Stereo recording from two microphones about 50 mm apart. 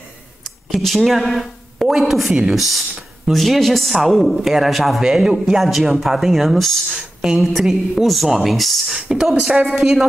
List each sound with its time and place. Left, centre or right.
0.7 s a woman's voice: centre
7.0 s a man's voice: centre
9.4 s a woman's voice: centre